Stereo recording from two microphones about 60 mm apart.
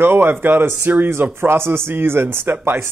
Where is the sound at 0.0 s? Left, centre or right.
Right.